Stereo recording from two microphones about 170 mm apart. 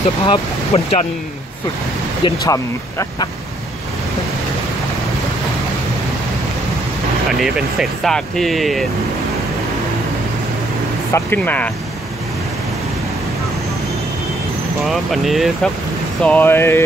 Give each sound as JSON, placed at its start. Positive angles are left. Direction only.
{"t": 0.2, "sound": "speech", "side_deg": 35}
{"t": 2.4, "sound": "speech", "side_deg": 20}
{"t": 7.3, "sound": "speech", "side_deg": 0}
{"t": 11.1, "sound": "speech", "side_deg": 10}
{"t": 14.9, "sound": "speech", "side_deg": 0}